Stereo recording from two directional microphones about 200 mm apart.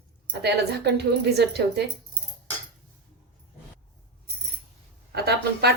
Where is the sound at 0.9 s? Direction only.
55° right (ahead or behind).